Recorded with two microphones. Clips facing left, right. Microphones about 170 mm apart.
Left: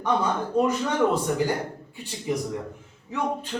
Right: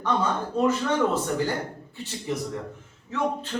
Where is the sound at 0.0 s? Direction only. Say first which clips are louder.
Left 1 dB; 15° left (ahead or behind).